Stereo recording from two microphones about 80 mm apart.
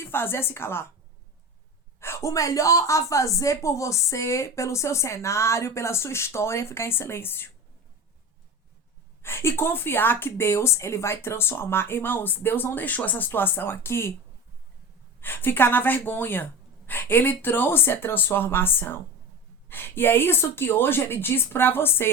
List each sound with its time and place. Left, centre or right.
0.0 s a woman's voice: left
2.0 s a woman's voice: left
9.2 s a woman's voice: left
15.2 s a woman's voice: left